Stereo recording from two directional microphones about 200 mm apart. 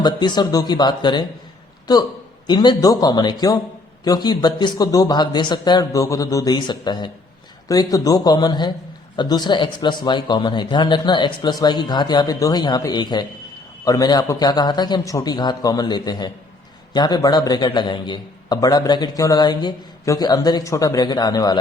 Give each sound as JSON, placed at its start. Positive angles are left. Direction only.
{"t": 0.0, "sound": "a man's voice", "side_deg": 20}